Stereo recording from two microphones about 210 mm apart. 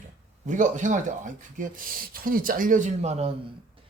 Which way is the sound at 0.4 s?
35° right (ahead or behind).